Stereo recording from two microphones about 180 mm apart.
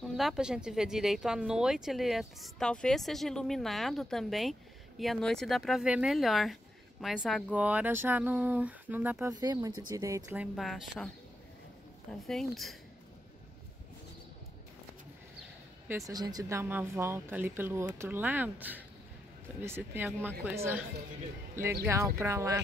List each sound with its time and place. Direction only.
0.2 s speech: 5° right (ahead or behind)
9.3 s speech: 20° right (ahead or behind)
10.3 s speech: 5° right (ahead or behind)
12.1 s speech: centre (ahead or behind)
15.9 s speech: 20° right (ahead or behind)
21.8 s speech: 15° right (ahead or behind)